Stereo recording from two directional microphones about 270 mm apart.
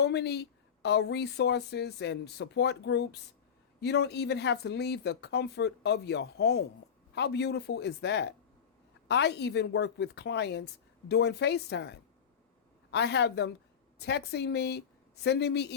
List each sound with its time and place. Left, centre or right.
0.0 s speech: left